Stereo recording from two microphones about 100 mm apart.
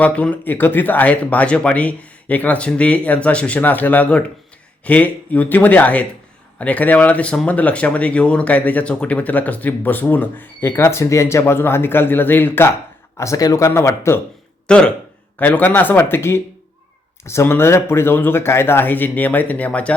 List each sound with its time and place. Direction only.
0.0 s speech: 15° left (ahead or behind)
13.1 s speech: 35° left (ahead or behind)
13.7 s speech: 25° left (ahead or behind)
14.7 s speech: 10° left (ahead or behind)